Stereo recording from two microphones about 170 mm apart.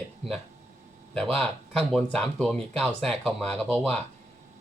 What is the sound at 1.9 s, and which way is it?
Speech, 5° left (ahead or behind).